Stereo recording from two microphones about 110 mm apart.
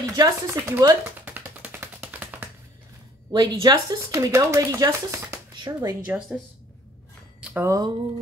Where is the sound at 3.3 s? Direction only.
40° right (ahead or behind).